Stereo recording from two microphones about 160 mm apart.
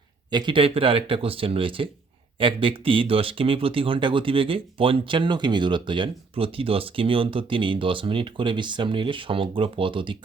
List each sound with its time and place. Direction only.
0.3 s speech: 30° right (ahead or behind)